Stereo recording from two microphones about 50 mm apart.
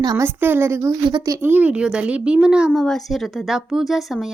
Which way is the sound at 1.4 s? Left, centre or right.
Right.